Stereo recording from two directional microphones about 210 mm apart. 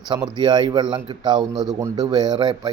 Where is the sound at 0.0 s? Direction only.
20° right (ahead or behind).